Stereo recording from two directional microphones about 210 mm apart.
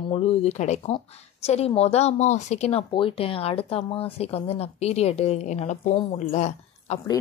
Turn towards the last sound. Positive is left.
turn(degrees=30)  # may be behind; listen again after turning